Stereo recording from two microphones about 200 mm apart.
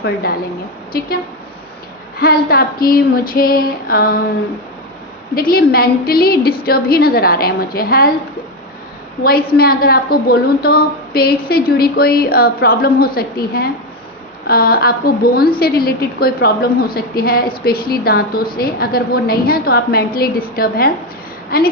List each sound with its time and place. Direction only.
0.0 s a woman's voice: 50° left (ahead or behind)
2.2 s a woman's voice: 50° left (ahead or behind)
5.3 s a woman's voice: 45° left (ahead or behind)
9.2 s a woman's voice: 50° left (ahead or behind)